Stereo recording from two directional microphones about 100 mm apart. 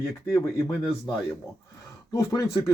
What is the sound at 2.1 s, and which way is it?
Speech, 30° left (ahead or behind).